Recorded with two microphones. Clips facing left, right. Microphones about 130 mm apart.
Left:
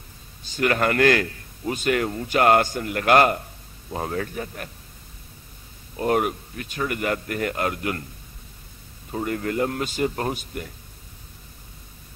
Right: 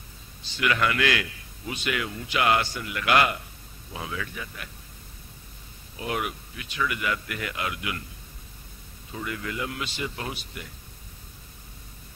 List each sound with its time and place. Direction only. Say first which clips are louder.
0.4 s a man's voice: left 4 dB; 45° left (ahead or behind)
5.9 s a man's voice: left 8 dB; 45° left (ahead or behind)
9.1 s a man's voice: left 8 dB; 45° left (ahead or behind)